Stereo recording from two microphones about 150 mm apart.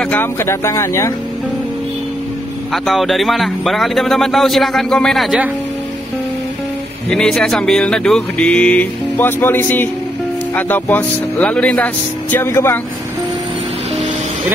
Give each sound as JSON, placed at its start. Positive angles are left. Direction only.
{"t": 0.0, "sound": "speech", "side_deg": 15}
{"t": 2.7, "sound": "speech", "side_deg": 0}
{"t": 7.1, "sound": "speech", "side_deg": 5}